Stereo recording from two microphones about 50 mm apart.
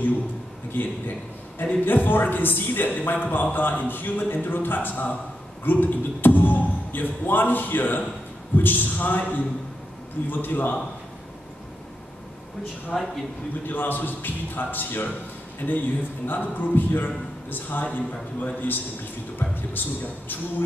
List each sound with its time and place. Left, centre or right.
0.8 s a man's voice: left
12.9 s a man's voice: centre
13.7 s a man's voice: left